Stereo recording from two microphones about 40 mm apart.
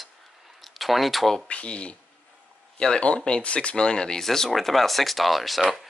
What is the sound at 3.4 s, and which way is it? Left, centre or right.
Speech, left.